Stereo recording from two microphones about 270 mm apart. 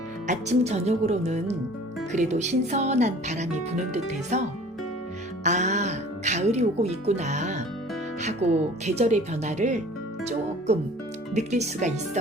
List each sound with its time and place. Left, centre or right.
0.3 s speech: right
5.4 s speech: right